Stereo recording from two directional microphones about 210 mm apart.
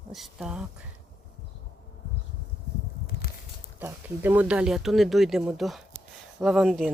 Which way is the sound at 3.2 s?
45° left (ahead or behind).